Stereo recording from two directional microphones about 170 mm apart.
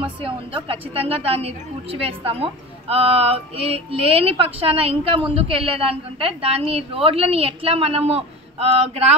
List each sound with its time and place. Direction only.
0.0 s a woman's voice: 30° right (ahead or behind)